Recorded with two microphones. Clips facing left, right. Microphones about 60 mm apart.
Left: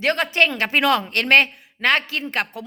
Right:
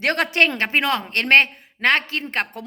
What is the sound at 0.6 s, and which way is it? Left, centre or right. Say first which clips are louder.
A woman's voice: left 2 dB; right.